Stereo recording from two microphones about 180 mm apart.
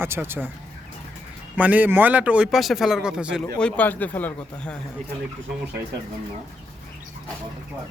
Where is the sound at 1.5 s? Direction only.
10° right (ahead or behind).